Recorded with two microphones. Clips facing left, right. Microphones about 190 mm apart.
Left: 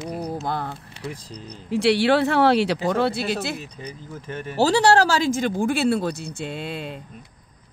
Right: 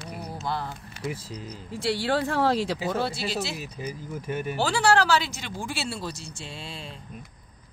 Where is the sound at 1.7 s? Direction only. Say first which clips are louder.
Left 8 dB; 75° left (ahead or behind).